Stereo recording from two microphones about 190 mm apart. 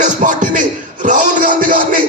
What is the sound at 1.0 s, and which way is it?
Music, 40° right (ahead or behind).